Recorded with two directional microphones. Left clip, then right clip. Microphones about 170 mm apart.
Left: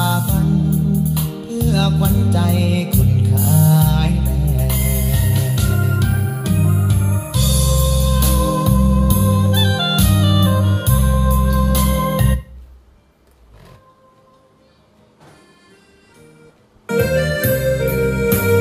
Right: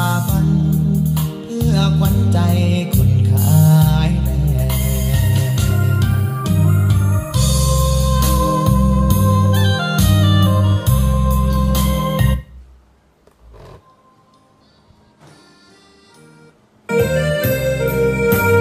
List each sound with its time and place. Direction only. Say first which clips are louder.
0.0 s music: even; centre (ahead or behind)
16.8 s music: right 1 dB; 15° left (ahead or behind)